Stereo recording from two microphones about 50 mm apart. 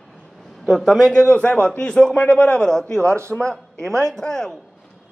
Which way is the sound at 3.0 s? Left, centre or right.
Right.